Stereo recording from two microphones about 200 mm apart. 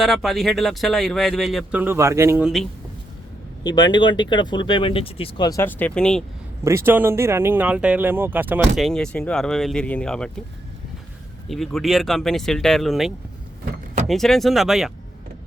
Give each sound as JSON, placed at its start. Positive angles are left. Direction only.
{"t": 0.0, "sound": "speech", "side_deg": 0}
{"t": 3.6, "sound": "speech", "side_deg": 20}
{"t": 6.7, "sound": "speech", "side_deg": -10}
{"t": 11.4, "sound": "speech", "side_deg": 0}